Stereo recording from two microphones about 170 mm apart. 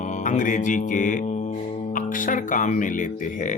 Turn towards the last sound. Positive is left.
turn(degrees=50)  # may be behind; listen again after turning